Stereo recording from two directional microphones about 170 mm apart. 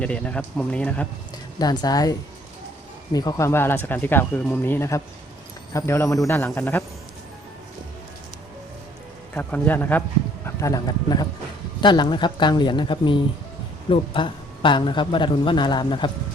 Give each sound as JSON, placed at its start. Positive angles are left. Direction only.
{"t": 0.0, "sound": "speech", "side_deg": 5}
{"t": 1.5, "sound": "speech", "side_deg": 25}
{"t": 9.3, "sound": "speech", "side_deg": 10}